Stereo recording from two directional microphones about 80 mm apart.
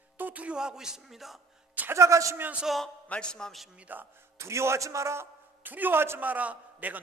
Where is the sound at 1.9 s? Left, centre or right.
Right.